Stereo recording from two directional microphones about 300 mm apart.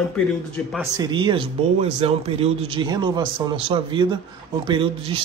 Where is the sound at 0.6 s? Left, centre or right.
Centre.